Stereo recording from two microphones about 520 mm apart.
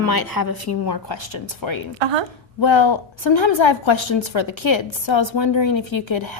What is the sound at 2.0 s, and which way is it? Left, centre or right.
Speech, right.